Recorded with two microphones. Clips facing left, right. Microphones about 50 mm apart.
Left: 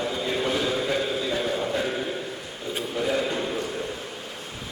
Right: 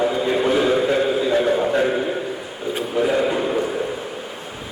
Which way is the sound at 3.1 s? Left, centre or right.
Centre.